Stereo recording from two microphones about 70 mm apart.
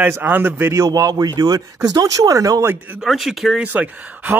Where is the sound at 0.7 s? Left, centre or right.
Right.